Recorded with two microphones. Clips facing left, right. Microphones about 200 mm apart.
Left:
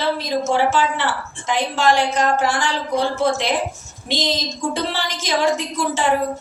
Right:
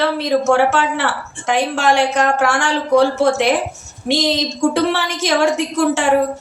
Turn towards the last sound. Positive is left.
turn(degrees=-70)  # may be behind; listen again after turning